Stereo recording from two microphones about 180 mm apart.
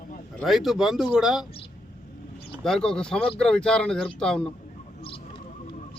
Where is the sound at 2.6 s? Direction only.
5° left (ahead or behind).